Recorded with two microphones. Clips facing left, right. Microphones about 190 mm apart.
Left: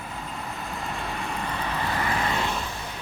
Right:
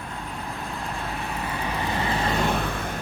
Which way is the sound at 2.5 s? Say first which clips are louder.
Right 5 dB; 60° right (ahead or behind).